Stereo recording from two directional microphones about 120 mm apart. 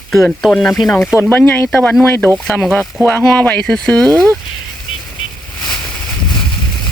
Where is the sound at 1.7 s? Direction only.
5° left (ahead or behind).